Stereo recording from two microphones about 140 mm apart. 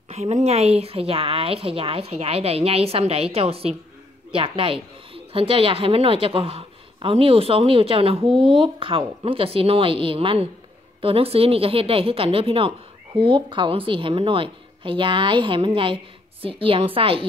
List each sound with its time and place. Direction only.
0.1 s a woman's voice: 50° right (ahead or behind)